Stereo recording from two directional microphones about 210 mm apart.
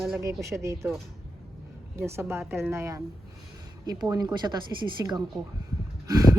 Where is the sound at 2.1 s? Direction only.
10° right (ahead or behind).